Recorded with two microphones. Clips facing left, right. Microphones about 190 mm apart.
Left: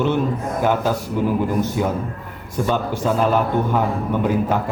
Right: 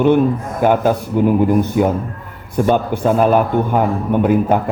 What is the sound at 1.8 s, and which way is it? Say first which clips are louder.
A man's voice: right 6 dB; 60° right (ahead or behind).